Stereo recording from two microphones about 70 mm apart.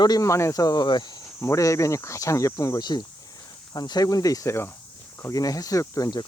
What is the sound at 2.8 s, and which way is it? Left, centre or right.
Speech, left.